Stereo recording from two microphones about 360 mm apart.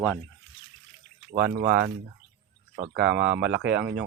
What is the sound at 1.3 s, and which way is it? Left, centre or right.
Speech, right.